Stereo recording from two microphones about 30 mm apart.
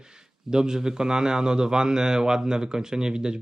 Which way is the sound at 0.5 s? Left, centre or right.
Right.